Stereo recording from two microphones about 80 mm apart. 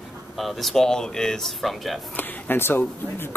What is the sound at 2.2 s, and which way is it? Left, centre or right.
Speech, left.